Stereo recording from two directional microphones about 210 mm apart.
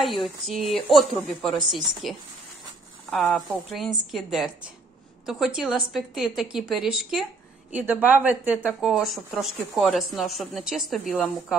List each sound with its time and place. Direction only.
0.0 s speech: centre (ahead or behind)